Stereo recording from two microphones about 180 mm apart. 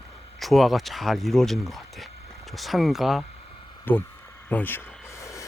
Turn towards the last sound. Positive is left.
turn(degrees=15)  # may be behind; listen again after turning